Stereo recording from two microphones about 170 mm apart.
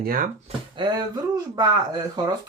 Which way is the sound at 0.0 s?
55° right (ahead or behind).